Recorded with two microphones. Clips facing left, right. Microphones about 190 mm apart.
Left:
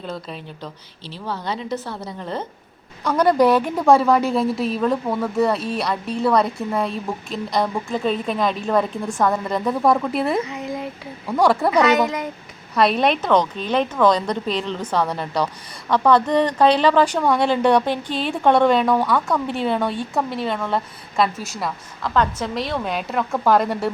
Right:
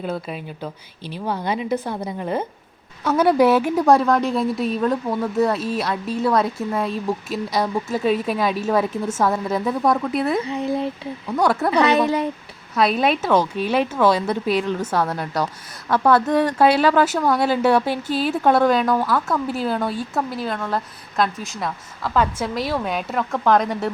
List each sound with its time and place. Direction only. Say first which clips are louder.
0.0 s a woman's voice: right 4 dB; 10° right (ahead or behind)
10.4 s speech: right 5 dB; 30° right (ahead or behind)
12.7 s a woman's voice: left 1 dB; centre (ahead or behind)